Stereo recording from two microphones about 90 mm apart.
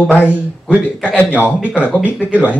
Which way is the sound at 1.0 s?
20° left (ahead or behind).